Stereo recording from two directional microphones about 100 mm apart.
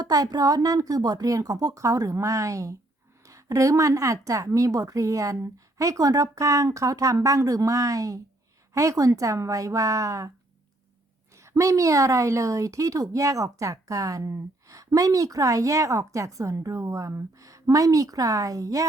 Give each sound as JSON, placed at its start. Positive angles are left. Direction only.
{"t": 0.0, "sound": "a woman's voice", "side_deg": -40}
{"t": 11.3, "sound": "a woman's voice", "side_deg": -30}